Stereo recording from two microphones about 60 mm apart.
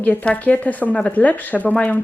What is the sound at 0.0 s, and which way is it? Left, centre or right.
Speech, left.